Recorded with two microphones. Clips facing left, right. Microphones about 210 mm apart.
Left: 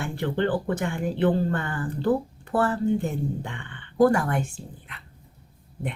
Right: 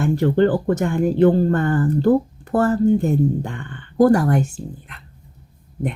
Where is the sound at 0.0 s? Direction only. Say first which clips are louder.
Right 9 dB; 45° right (ahead or behind).